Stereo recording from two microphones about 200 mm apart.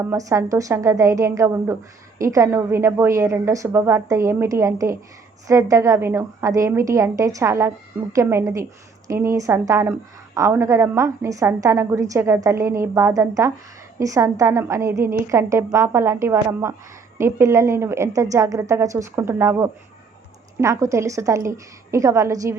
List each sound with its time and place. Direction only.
0.0 s a woman's voice: 15° right (ahead or behind)